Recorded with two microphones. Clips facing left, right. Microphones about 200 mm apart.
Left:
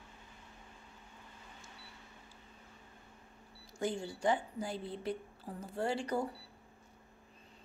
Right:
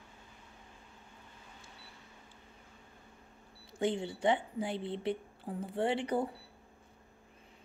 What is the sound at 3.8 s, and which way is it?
A woman's voice, 20° right (ahead or behind).